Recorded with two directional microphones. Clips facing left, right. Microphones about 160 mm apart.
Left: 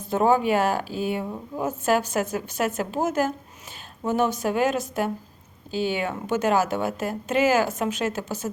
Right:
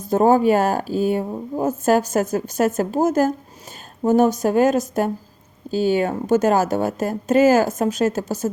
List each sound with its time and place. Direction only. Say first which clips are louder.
0.0 s speech: right 5 dB; 40° right (ahead or behind)